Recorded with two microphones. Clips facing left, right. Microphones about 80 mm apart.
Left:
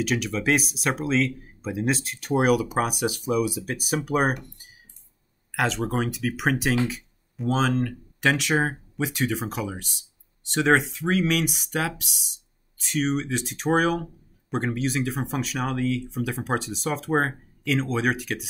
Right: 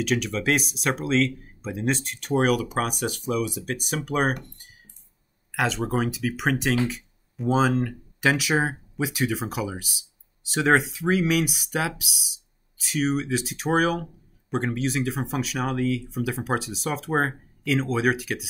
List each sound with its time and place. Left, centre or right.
0.0 s speech: centre